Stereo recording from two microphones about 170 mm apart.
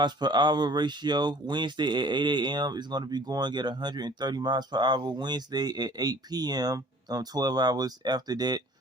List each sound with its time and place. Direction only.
0.0 s speech: 25° right (ahead or behind)